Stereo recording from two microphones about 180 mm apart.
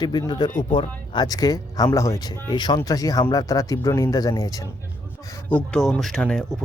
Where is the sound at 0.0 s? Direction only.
25° left (ahead or behind).